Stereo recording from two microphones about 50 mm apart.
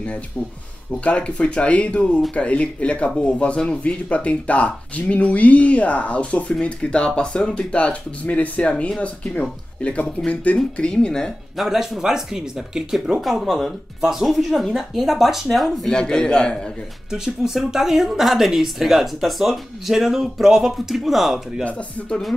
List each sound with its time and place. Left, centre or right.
1.0 s speech: left
7.7 s speech: left
10.9 s a man's voice: centre
11.5 s a woman's voice: centre
13.2 s speech: centre
15.9 s a man's voice: centre
17.1 s a woman's voice: centre
21.6 s speech: left